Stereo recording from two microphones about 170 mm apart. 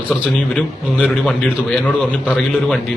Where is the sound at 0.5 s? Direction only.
5° left (ahead or behind).